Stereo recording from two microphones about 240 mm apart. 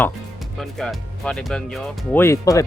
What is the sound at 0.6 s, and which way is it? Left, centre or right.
Speech, centre.